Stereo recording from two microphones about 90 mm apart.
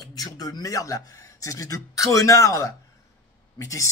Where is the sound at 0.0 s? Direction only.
45° left (ahead or behind).